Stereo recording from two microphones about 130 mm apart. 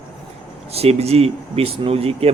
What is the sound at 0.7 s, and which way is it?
Speech, 50° right (ahead or behind).